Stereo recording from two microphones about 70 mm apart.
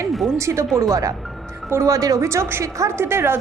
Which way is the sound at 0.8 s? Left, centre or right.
Right.